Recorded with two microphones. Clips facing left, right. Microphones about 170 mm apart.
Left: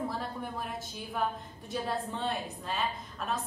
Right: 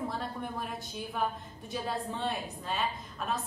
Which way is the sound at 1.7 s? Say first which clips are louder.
Left 1 dB; centre (ahead or behind).